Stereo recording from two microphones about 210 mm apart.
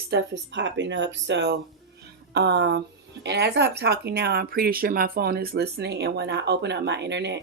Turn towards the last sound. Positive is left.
turn(degrees=-55)  # may be behind; listen again after turning